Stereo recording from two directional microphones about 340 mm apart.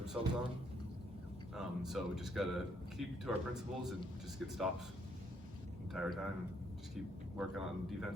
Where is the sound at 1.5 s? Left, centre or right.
Centre.